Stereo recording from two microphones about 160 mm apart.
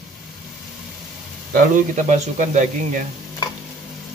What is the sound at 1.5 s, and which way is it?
A man's voice, 55° right (ahead or behind).